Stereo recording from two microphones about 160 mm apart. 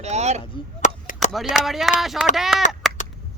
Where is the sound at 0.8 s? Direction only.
50° left (ahead or behind).